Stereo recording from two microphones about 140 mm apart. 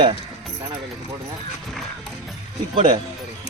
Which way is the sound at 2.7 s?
35° right (ahead or behind).